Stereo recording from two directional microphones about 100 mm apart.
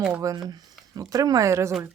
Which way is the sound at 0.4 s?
40° right (ahead or behind).